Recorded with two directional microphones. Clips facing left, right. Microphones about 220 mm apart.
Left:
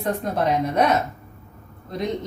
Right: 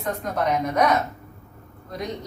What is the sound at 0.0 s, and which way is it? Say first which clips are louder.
Speech: left 2 dB; 30° left (ahead or behind).